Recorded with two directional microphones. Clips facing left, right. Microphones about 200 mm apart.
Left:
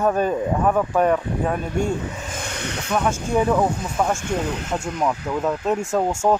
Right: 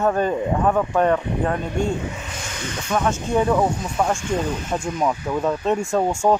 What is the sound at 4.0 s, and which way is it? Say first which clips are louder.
Speech: right 1 dB; 5° right (ahead or behind).